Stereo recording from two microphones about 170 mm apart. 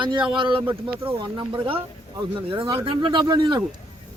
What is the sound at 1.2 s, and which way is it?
Speech, 30° right (ahead or behind).